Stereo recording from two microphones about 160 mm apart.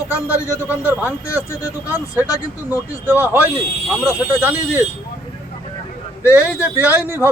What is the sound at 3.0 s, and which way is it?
Speech, 15° right (ahead or behind).